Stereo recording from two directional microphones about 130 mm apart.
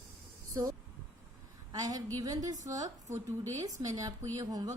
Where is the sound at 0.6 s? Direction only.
30° right (ahead or behind).